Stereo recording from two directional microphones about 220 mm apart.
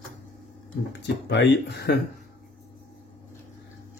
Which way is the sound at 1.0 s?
50° left (ahead or behind).